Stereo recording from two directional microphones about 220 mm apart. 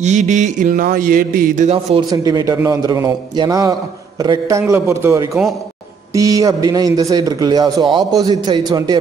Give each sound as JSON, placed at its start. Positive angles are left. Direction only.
{"t": 0.0, "sound": "speech", "side_deg": -35}
{"t": 2.0, "sound": "a man's voice", "side_deg": -15}